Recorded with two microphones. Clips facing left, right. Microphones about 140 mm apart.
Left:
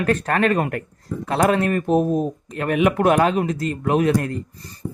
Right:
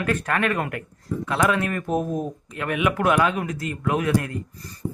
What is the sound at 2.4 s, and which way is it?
Speech, 40° left (ahead or behind).